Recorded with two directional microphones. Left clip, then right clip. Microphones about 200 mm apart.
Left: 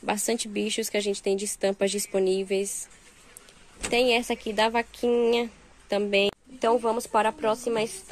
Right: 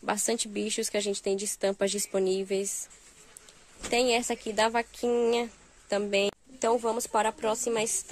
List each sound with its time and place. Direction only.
0.0 s speech: 10° right (ahead or behind)
3.9 s speech: 15° right (ahead or behind)